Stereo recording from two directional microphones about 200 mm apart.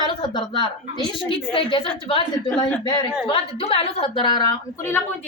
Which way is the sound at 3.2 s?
25° left (ahead or behind).